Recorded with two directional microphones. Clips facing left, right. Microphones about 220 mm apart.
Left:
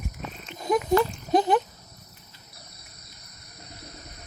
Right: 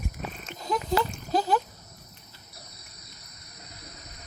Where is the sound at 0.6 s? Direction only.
20° left (ahead or behind).